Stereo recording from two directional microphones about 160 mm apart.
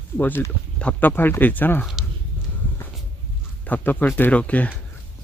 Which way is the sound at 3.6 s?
10° left (ahead or behind).